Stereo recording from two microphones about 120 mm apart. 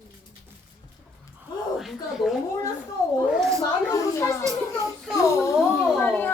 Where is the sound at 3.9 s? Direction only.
25° left (ahead or behind).